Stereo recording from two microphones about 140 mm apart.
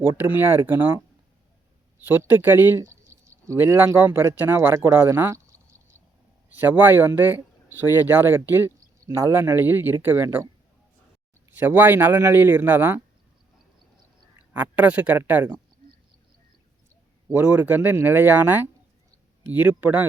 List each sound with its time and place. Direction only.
0.2 s speech: 15° right (ahead or behind)
2.0 s speech: 15° right (ahead or behind)
11.5 s speech: 15° right (ahead or behind)
14.3 s speech: 10° right (ahead or behind)
17.3 s speech: 10° right (ahead or behind)